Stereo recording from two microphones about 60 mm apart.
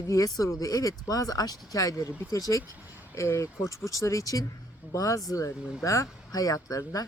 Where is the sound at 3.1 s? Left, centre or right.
Left.